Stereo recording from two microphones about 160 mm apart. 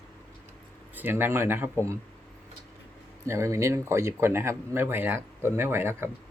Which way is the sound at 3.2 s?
15° right (ahead or behind).